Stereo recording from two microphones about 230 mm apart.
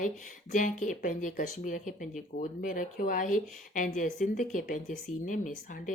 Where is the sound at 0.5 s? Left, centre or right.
Left.